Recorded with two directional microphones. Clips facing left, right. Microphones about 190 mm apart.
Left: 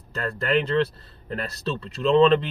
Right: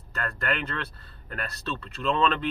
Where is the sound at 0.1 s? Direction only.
30° left (ahead or behind).